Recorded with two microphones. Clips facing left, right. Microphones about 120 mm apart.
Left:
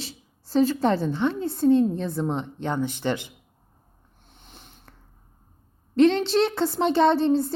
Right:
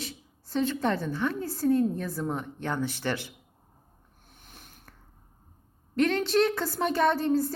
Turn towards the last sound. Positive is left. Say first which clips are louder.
# left 5 dB
turn(degrees=25)  # may be behind; listen again after turning